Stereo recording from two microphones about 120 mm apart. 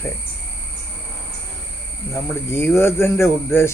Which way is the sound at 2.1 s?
20° left (ahead or behind).